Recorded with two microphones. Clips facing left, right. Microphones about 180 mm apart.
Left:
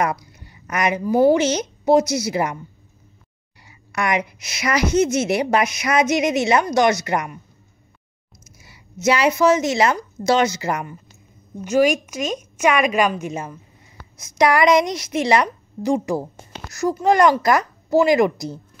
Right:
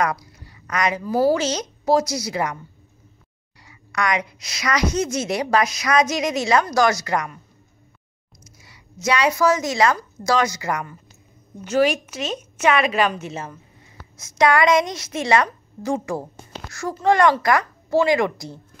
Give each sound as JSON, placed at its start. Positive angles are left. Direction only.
{"t": 0.0, "sound": "a woman's voice", "side_deg": 25}
{"t": 3.6, "sound": "a woman's voice", "side_deg": 25}
{"t": 8.5, "sound": "a woman's voice", "side_deg": 25}
{"t": 11.6, "sound": "a woman's voice", "side_deg": 10}